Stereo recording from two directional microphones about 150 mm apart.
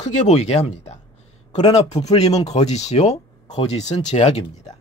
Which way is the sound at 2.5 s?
50° left (ahead or behind).